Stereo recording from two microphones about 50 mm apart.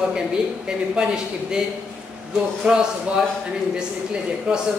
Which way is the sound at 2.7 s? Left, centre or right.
Centre.